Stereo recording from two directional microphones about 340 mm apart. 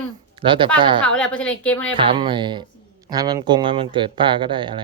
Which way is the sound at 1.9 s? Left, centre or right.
Centre.